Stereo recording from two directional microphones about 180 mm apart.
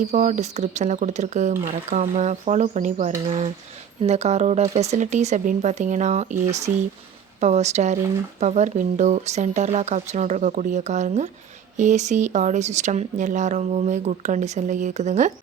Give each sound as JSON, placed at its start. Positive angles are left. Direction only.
{"t": 0.0, "sound": "speech", "side_deg": -40}